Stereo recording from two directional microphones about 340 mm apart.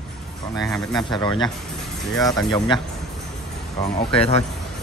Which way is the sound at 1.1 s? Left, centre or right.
Centre.